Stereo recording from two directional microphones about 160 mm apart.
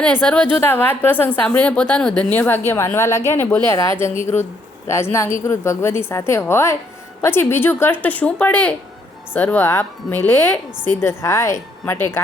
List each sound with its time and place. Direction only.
0.2 s a woman's voice: 5° left (ahead or behind)